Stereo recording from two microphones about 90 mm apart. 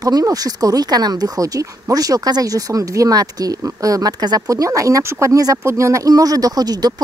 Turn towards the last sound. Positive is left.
turn(degrees=-45)  # may be behind; listen again after turning